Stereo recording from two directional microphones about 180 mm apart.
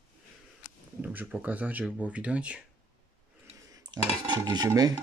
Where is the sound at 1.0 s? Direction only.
10° right (ahead or behind).